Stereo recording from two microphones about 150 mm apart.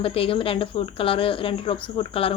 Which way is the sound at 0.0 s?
40° left (ahead or behind).